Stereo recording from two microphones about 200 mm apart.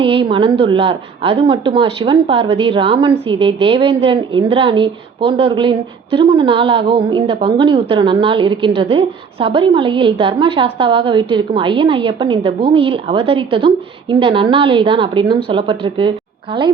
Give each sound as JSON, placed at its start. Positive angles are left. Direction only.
{"t": 0.0, "sound": "a woman's voice", "side_deg": -25}